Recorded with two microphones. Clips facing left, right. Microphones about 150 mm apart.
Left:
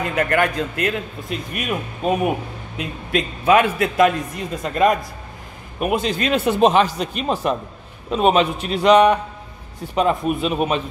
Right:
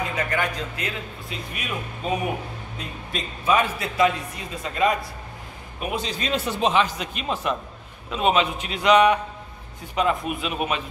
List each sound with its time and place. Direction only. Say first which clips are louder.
0.1 s a man's voice: left 7 dB; 55° left (ahead or behind)
2.8 s a man's voice: left 10 dB; 70° left (ahead or behind); by 10.8 s 30° left (ahead or behind)